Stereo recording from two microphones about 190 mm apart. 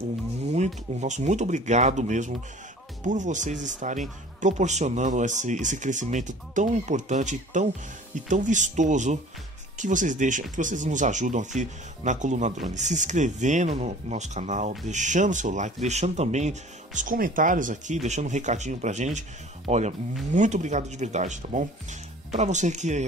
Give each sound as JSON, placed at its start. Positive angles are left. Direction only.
{"t": 0.5, "sound": "speech", "side_deg": -35}